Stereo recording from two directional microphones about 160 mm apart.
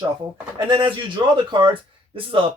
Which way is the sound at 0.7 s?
30° right (ahead or behind).